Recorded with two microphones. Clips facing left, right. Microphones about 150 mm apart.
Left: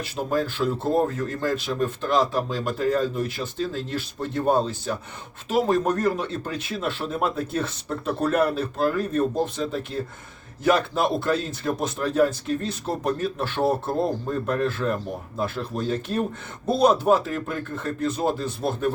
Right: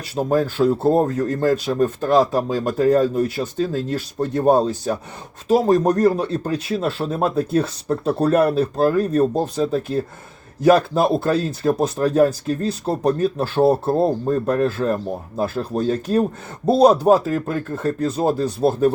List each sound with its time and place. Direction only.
0.2 s speech: 45° right (ahead or behind)